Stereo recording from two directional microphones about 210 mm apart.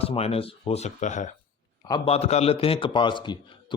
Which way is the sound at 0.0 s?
30° left (ahead or behind).